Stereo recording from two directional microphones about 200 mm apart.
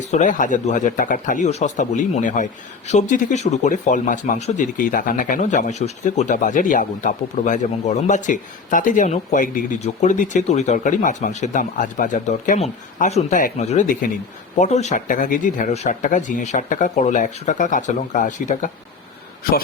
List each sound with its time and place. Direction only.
0.0 s speech: 35° left (ahead or behind)